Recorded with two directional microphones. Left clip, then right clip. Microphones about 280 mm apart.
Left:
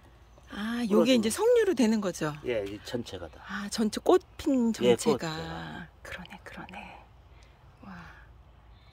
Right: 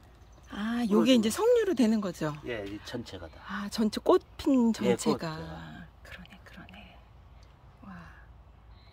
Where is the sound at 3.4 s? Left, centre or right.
Centre.